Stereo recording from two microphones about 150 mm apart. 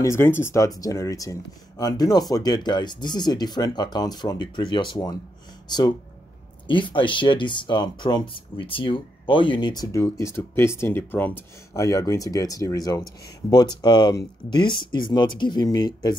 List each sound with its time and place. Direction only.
0.0 s speech: 15° left (ahead or behind)
6.7 s speech: 35° left (ahead or behind)